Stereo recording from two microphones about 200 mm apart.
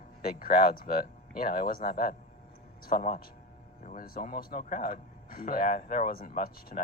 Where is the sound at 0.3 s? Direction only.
45° left (ahead or behind).